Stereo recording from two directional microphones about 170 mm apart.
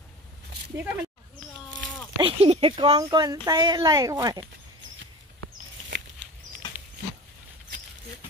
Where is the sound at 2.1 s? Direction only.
35° right (ahead or behind).